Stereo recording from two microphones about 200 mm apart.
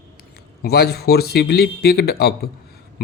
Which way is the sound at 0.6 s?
50° left (ahead or behind).